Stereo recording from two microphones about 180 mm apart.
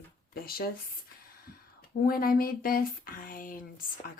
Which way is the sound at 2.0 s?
55° left (ahead or behind).